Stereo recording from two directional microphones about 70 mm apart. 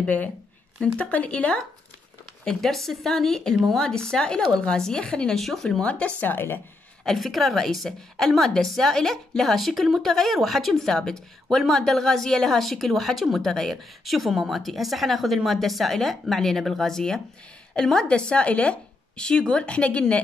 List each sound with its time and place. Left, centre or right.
0.0 s speech: left
2.4 s speech: centre
6.2 s speech: left
7.1 s speech: centre